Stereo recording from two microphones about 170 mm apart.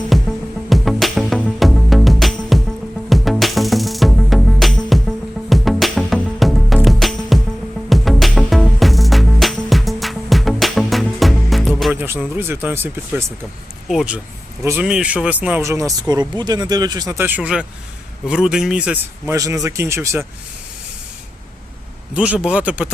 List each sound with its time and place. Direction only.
0.1 s music: centre (ahead or behind)
11.9 s music: 15° right (ahead or behind)
12.4 s a man's voice: 15° right (ahead or behind)
22.1 s a man's voice: 5° right (ahead or behind)